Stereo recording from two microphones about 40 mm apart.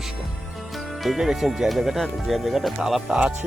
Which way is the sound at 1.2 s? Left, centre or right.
Centre.